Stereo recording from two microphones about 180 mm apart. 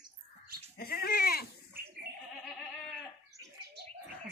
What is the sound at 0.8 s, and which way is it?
Goat, 60° left (ahead or behind).